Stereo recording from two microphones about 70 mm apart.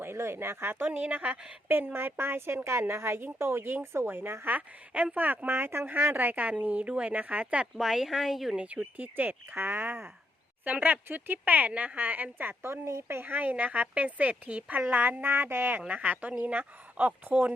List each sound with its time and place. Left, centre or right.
0.0 s a woman's voice: right; by 7.7 s centre
7.8 s a woman's voice: centre
8.5 s speech: centre